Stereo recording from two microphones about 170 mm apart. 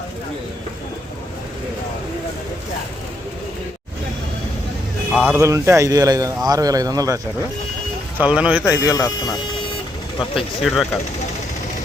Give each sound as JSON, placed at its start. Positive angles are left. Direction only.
{"t": 5.2, "sound": "a man's voice", "side_deg": -15}
{"t": 8.2, "sound": "speech", "side_deg": -10}
{"t": 8.9, "sound": "speech", "side_deg": 20}
{"t": 10.3, "sound": "speech", "side_deg": 0}